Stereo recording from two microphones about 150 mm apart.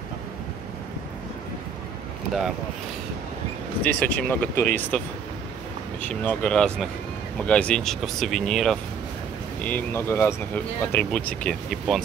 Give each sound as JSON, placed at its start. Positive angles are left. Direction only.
{"t": 3.8, "sound": "speech", "side_deg": 10}
{"t": 6.0, "sound": "speech", "side_deg": 10}
{"t": 9.6, "sound": "speech", "side_deg": 10}